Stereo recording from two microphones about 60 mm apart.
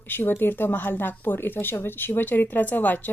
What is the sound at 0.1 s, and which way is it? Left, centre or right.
Speech, left.